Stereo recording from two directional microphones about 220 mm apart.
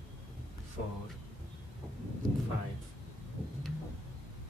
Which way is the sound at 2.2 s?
25° left (ahead or behind).